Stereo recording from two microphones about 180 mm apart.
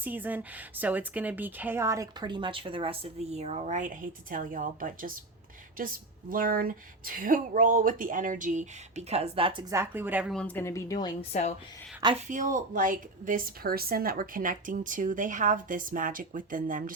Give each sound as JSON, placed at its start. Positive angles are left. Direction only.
{"t": 0.0, "sound": "speech", "side_deg": -10}
{"t": 6.3, "sound": "a woman's voice", "side_deg": -55}
{"t": 9.7, "sound": "speech", "side_deg": -10}
{"t": 10.3, "sound": "a woman's voice", "side_deg": 10}
{"t": 11.3, "sound": "a woman's voice", "side_deg": 40}
{"t": 12.1, "sound": "a woman's voice", "side_deg": -45}